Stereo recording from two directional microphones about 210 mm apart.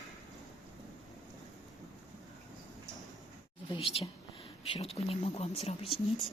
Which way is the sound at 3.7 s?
25° left (ahead or behind).